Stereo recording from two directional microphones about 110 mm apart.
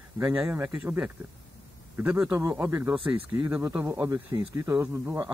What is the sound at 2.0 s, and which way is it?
Speech, 15° right (ahead or behind).